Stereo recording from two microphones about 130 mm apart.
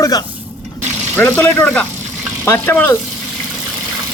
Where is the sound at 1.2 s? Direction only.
15° left (ahead or behind).